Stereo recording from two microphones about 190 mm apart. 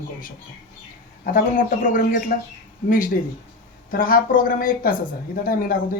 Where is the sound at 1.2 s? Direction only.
45° left (ahead or behind).